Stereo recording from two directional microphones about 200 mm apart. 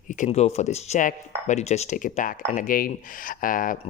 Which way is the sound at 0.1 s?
35° left (ahead or behind).